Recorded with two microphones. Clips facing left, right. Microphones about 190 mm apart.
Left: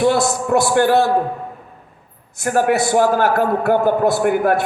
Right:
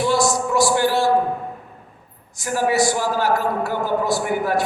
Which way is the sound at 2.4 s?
55° left (ahead or behind).